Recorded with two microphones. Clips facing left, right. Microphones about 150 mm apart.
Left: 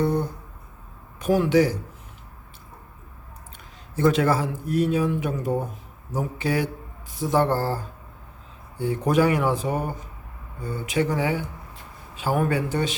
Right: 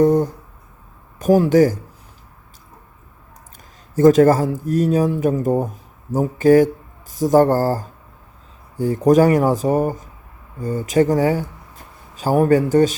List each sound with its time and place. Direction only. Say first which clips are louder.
0.0 s a sound: right 9 dB; 45° right (ahead or behind)
1.2 s speech: right 6 dB; 40° right (ahead or behind)
3.9 s speech: right 9 dB; 45° right (ahead or behind)